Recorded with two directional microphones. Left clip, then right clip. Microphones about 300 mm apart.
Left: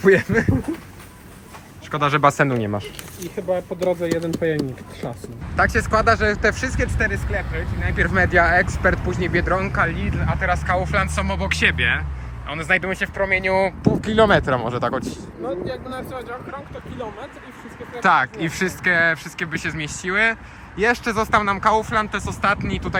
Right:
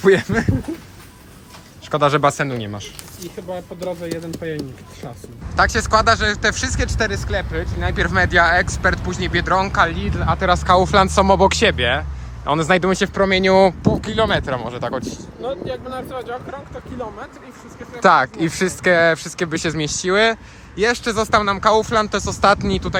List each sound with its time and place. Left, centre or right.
0.0 s speech: centre
1.9 s speech: centre
3.2 s speech: left
5.5 s speech: centre
13.8 s speech: centre
15.4 s speech: centre
18.0 s speech: centre